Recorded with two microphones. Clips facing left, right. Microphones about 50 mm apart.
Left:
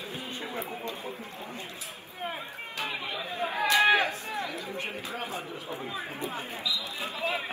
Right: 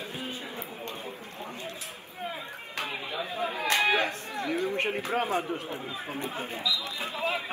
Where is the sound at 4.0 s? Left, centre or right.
Right.